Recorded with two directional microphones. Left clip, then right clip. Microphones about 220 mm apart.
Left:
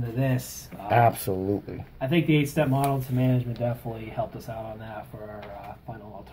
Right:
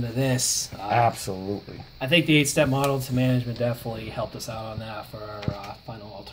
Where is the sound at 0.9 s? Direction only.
25° left (ahead or behind).